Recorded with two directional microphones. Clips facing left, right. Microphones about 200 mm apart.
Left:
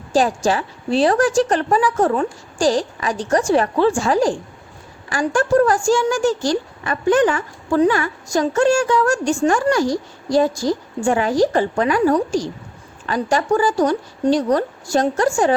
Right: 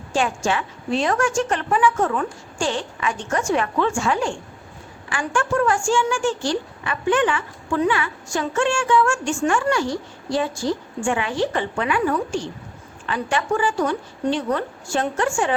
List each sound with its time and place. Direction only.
0.1 s a woman's voice: 35° left (ahead or behind)